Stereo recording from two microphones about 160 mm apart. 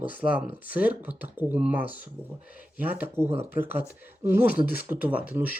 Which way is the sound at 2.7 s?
10° right (ahead or behind).